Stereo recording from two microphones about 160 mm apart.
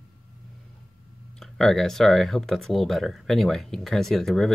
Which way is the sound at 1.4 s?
Centre (ahead or behind).